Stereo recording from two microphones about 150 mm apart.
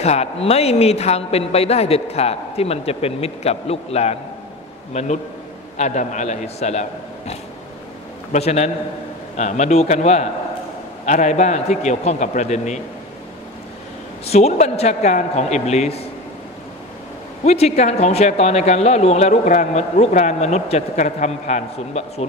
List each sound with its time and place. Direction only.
0.0 s speech: 45° left (ahead or behind)
14.2 s speech: 45° left (ahead or behind)
17.5 s speech: 45° left (ahead or behind)